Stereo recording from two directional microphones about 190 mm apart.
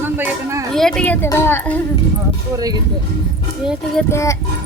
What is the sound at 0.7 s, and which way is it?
A woman's voice, 5° left (ahead or behind).